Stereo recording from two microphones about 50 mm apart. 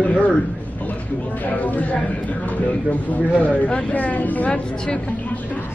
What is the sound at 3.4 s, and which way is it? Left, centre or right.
Speech, left.